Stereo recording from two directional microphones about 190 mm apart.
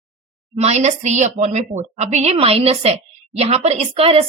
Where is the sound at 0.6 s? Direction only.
35° right (ahead or behind).